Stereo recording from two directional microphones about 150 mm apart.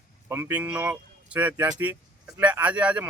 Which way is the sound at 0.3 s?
15° right (ahead or behind).